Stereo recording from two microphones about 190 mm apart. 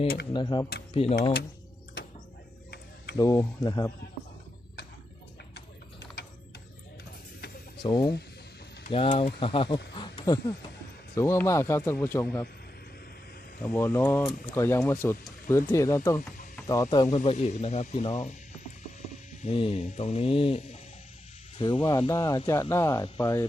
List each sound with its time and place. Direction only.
0.3 s speech: 25° left (ahead or behind)
3.2 s speech: 20° left (ahead or behind)
7.8 s speech: 25° left (ahead or behind)
13.6 s speech: 10° left (ahead or behind)
17.1 s speech: 35° left (ahead or behind)
18.9 s hum: 40° left (ahead or behind)
21.6 s speech: 25° left (ahead or behind)